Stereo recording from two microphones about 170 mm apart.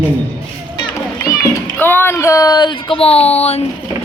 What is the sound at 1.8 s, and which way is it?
Speech, 10° left (ahead or behind).